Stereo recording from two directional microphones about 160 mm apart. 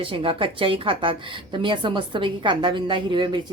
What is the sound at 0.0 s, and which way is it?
A woman's voice, 35° right (ahead or behind).